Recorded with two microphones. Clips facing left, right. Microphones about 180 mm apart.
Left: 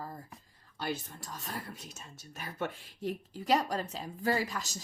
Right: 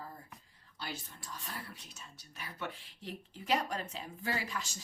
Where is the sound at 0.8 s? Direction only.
45° left (ahead or behind).